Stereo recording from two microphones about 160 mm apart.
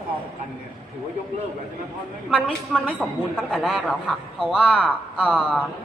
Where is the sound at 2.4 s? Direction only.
5° left (ahead or behind).